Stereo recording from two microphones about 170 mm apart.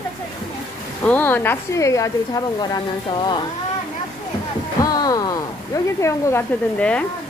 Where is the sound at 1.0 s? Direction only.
10° left (ahead or behind).